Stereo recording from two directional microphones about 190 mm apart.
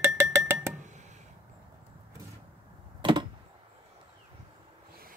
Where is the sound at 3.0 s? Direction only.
25° right (ahead or behind).